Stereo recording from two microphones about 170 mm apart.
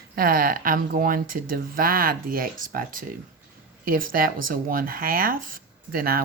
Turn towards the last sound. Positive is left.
turn(degrees=-60)  # may be behind; listen again after turning